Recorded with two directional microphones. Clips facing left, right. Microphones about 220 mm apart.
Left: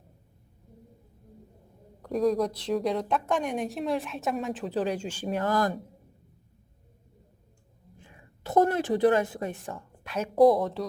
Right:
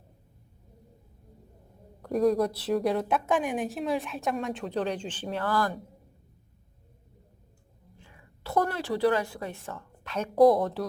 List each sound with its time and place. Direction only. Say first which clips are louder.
2.0 s a woman's voice: right 1 dB; centre (ahead or behind); by 5.8 s 20° left (ahead or behind)
8.0 s a woman's voice: left 2 dB; 20° left (ahead or behind)
10.3 s a woman's voice: even; centre (ahead or behind)